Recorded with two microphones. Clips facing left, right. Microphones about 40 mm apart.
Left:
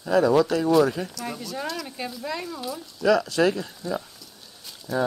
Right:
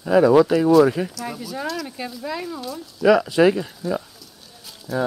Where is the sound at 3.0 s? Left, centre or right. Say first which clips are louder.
Right 5 dB; centre.